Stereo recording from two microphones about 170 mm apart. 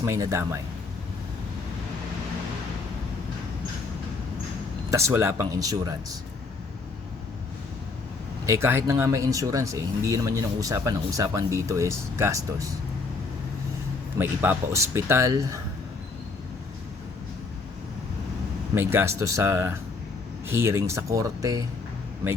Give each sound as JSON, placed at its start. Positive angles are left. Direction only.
{"t": 0.0, "sound": "speech", "side_deg": -15}
{"t": 4.9, "sound": "speech", "side_deg": -15}
{"t": 8.4, "sound": "speech", "side_deg": -15}
{"t": 14.2, "sound": "speech", "side_deg": -15}
{"t": 18.7, "sound": "speech", "side_deg": -15}